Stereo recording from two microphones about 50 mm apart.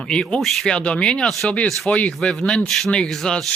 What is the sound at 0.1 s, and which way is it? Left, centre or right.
Speech, centre.